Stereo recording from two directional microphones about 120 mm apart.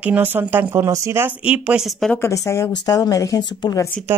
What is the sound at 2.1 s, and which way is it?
Speech, 25° left (ahead or behind).